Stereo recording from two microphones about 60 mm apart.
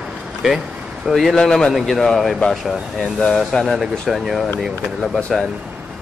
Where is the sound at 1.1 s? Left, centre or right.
Centre.